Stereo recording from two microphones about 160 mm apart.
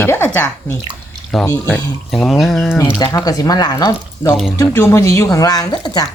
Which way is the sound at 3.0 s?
25° left (ahead or behind).